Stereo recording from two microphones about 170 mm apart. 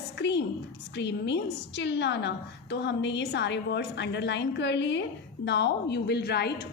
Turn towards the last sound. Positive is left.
turn(degrees=80)